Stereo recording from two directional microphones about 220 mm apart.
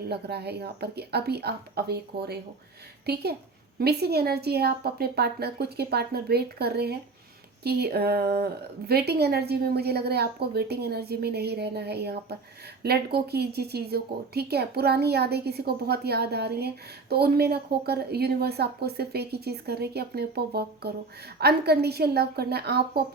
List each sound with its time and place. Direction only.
0.1 s a woman's voice: 45° right (ahead or behind)
3.8 s a woman's voice: 45° right (ahead or behind)